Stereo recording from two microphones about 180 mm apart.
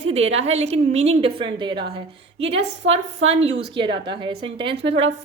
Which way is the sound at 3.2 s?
35° right (ahead or behind).